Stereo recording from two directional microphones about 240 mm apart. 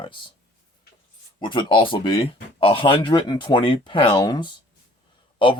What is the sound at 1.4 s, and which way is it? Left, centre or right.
Speech, centre.